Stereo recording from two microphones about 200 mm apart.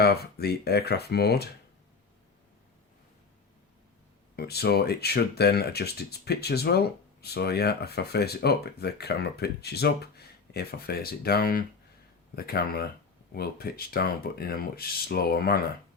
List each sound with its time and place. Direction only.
0.0 s speech: 50° left (ahead or behind)
4.4 s speech: 55° left (ahead or behind)